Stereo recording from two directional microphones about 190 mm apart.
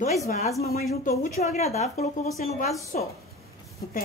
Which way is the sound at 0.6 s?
55° left (ahead or behind).